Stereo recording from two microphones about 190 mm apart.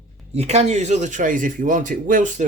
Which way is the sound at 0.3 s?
35° right (ahead or behind).